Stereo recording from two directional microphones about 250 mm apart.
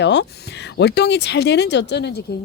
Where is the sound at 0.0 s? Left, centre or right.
Left.